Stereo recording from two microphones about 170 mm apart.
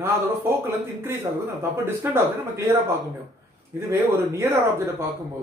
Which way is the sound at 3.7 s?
15° right (ahead or behind).